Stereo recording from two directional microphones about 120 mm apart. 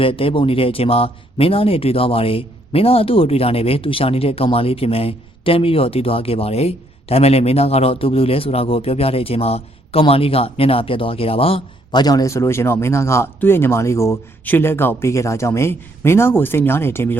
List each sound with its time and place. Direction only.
0.0 s speech: 50° left (ahead or behind)
11.9 s speech: 35° left (ahead or behind); by 17.2 s 20° left (ahead or behind)